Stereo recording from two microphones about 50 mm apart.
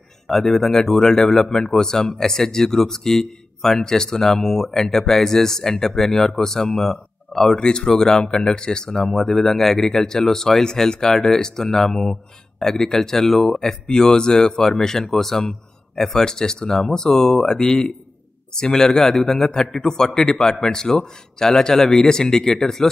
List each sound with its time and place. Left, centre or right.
0.3 s speech: centre